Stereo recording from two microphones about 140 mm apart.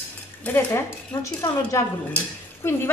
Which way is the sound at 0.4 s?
15° left (ahead or behind).